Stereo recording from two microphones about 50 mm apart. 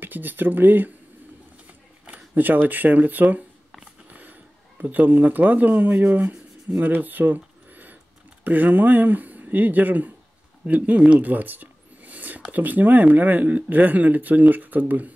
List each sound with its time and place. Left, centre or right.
0.0 s speech: right
2.0 s speech: right
6.8 s a sound: right
8.5 s speech: right
10.7 s a sound: right
12.5 s speech: right